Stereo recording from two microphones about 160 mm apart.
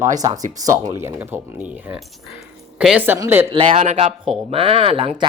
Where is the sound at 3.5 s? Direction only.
35° right (ahead or behind).